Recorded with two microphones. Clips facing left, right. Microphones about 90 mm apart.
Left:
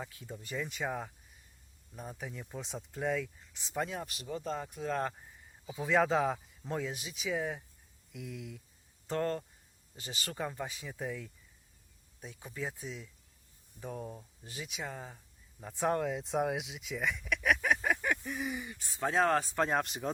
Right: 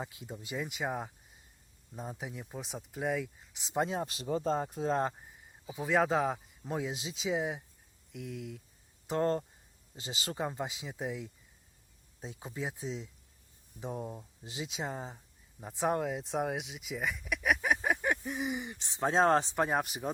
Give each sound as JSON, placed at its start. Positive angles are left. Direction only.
{"t": 0.0, "sound": "speech", "side_deg": -20}
{"t": 5.6, "sound": "speech", "side_deg": -5}
{"t": 6.9, "sound": "speech", "side_deg": -25}
{"t": 8.1, "sound": "speech", "side_deg": 0}
{"t": 9.1, "sound": "speech", "side_deg": -15}
{"t": 16.0, "sound": "speech", "side_deg": -5}
{"t": 19.6, "sound": "speech", "side_deg": -5}